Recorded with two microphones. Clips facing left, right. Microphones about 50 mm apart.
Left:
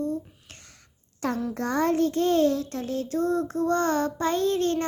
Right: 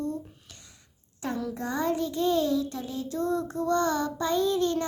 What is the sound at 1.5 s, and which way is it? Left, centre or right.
Child singing, left.